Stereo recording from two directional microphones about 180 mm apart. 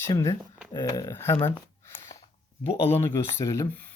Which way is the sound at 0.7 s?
20° left (ahead or behind).